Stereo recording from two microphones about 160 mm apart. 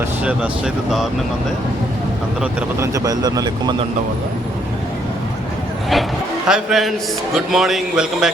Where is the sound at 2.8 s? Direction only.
20° right (ahead or behind).